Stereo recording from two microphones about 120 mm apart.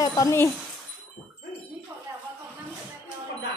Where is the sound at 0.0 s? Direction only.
30° left (ahead or behind).